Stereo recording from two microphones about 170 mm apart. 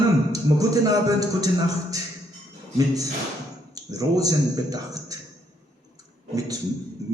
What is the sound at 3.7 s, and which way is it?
A man's voice, 20° right (ahead or behind).